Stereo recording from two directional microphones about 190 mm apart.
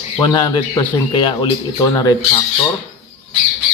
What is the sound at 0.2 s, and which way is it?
Speech, 20° left (ahead or behind).